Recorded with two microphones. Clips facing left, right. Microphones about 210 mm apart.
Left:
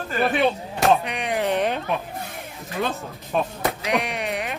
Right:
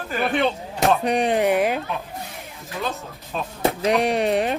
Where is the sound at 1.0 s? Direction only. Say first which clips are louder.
Right 8 dB; 35° right (ahead or behind).